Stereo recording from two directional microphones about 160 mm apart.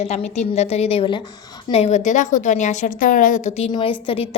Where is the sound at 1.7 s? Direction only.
40° left (ahead or behind).